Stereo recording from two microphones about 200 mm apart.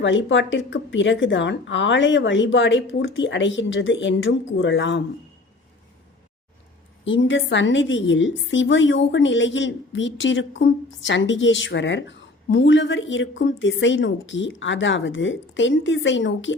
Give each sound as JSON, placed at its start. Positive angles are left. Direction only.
{"t": 0.0, "sound": "a woman's voice", "side_deg": 65}
{"t": 7.0, "sound": "a woman's voice", "side_deg": 70}